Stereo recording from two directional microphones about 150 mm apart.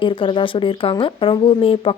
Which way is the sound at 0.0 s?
35° left (ahead or behind).